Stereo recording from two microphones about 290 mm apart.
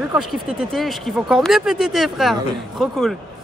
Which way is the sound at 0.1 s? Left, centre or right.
Centre.